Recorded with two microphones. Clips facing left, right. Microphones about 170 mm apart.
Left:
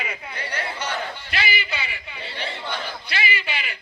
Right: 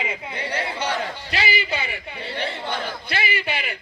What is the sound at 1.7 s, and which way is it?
A man's voice, 50° right (ahead or behind).